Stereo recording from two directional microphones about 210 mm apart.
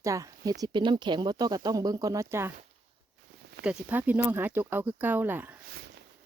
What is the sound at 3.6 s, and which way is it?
A woman's voice, 5° right (ahead or behind).